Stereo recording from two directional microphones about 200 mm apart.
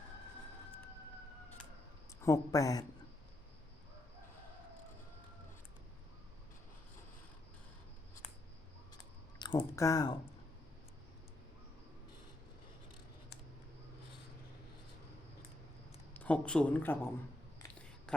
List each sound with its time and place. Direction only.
2.2 s speech: 15° left (ahead or behind)
9.4 s speech: 20° left (ahead or behind)
16.1 s speech: 5° left (ahead or behind)